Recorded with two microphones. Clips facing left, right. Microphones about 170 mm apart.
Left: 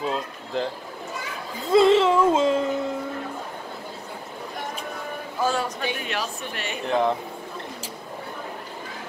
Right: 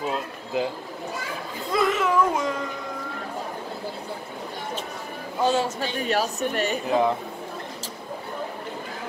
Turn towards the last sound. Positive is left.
turn(degrees=-5)  # may be behind; listen again after turning